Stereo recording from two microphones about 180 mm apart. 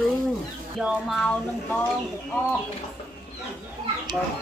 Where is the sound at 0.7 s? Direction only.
Centre (ahead or behind).